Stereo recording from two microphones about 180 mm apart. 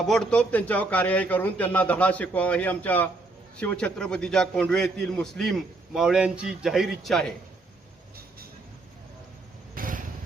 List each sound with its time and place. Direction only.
0.0 s a man's voice: centre (ahead or behind)
9.7 s vehicle: 50° right (ahead or behind)